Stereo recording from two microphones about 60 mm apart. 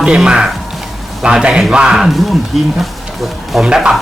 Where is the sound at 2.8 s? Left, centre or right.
Centre.